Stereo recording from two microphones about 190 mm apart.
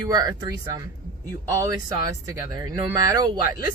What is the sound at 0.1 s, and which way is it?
Speech, 20° right (ahead or behind).